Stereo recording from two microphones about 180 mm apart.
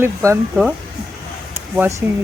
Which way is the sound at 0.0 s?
15° right (ahead or behind).